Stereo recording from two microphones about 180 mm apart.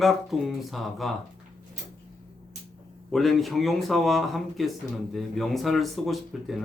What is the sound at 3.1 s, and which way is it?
Speech, centre (ahead or behind).